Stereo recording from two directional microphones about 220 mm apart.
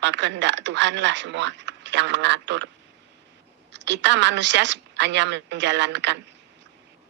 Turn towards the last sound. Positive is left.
turn(degrees=-50)  # may be behind; listen again after turning